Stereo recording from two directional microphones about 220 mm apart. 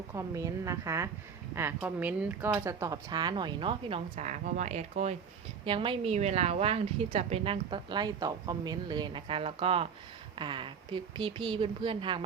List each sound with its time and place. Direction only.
0.1 s a woman's voice: 15° right (ahead or behind)